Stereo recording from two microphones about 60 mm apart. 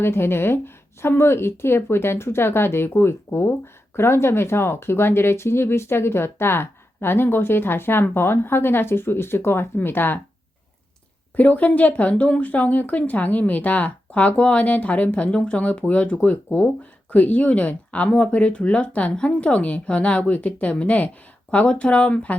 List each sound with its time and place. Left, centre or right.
0.0 s speech: left
11.3 s speech: left